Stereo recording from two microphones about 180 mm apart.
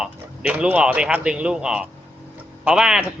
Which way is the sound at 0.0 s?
5° right (ahead or behind).